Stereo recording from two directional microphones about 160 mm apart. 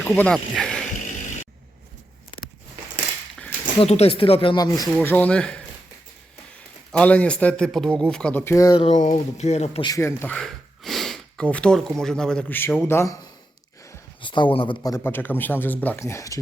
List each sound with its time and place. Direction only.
0.0 s speech: 10° left (ahead or behind)
1.0 s vehicle: 50° left (ahead or behind)
3.8 s speech: 40° left (ahead or behind); by 4.9 s 25° left (ahead or behind)
4.9 s a man's voice: 10° left (ahead or behind)
6.9 s a man's voice: 10° left (ahead or behind)
8.8 s speech: 50° left (ahead or behind)
9.8 s speech: 20° left (ahead or behind)
14.2 s speech: 30° left (ahead or behind)
14.9 s a man's voice: 15° left (ahead or behind)